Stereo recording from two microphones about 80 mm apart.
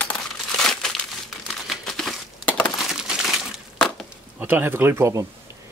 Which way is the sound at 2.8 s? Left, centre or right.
Centre.